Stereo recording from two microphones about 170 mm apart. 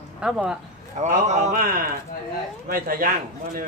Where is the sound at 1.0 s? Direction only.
45° right (ahead or behind).